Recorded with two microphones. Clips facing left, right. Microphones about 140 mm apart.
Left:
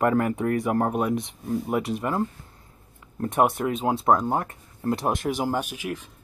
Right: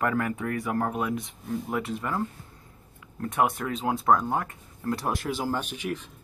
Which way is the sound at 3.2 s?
30° left (ahead or behind).